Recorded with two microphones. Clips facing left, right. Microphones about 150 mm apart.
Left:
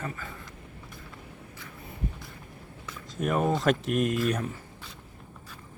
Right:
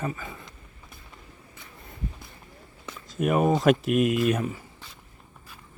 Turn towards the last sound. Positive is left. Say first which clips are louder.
# right 4 dB
turn(degrees=-5)  # may be behind; listen again after turning